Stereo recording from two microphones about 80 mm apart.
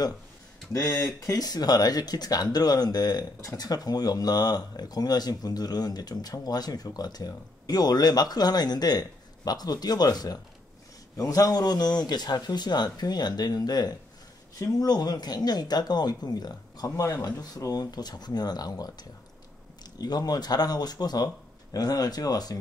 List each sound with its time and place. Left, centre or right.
0.7 s speech: left
20.0 s speech: left